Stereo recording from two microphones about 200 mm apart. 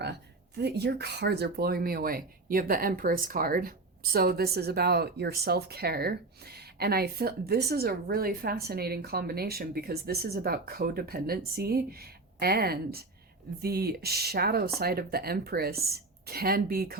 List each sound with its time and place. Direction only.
0.0 s speech: 55° right (ahead or behind)